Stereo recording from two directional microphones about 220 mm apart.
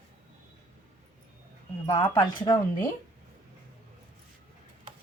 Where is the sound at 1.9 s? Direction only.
10° left (ahead or behind).